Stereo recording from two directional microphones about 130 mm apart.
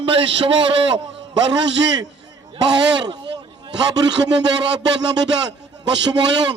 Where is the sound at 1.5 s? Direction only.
35° right (ahead or behind).